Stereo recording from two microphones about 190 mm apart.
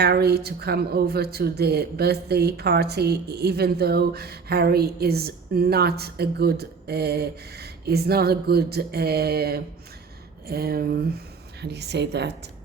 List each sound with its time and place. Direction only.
0.0 s speech: 60° right (ahead or behind)
10.5 s a sound: 55° right (ahead or behind)
11.6 s speech: 60° right (ahead or behind)